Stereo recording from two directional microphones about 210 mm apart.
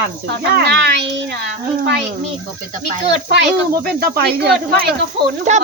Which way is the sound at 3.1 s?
55° right (ahead or behind).